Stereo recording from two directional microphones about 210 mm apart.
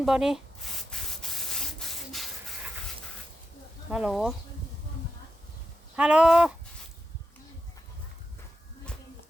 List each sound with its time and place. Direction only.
0.0 s sanding: centre (ahead or behind)
3.8 s speech: 5° right (ahead or behind)
6.0 s speech: 5° right (ahead or behind)